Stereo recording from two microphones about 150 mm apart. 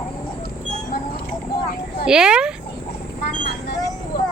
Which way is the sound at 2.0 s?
5° right (ahead or behind).